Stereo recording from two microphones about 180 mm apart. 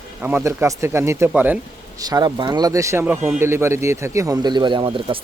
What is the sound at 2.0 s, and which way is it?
A man's voice, 20° right (ahead or behind).